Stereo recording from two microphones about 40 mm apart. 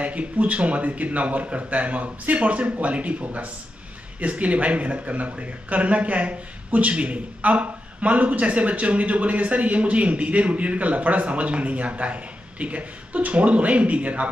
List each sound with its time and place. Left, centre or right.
0.0 s speech: right